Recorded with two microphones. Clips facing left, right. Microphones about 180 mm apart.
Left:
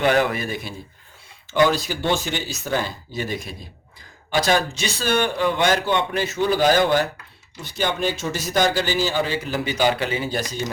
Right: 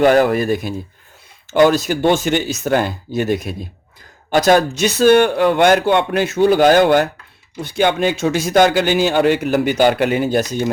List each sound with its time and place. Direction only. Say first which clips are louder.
0.0 s speech: right 7 dB; 45° right (ahead or behind)
4.3 s speech: right 7 dB; 45° right (ahead or behind)
5.2 s a man's voice: right 7 dB; 55° right (ahead or behind)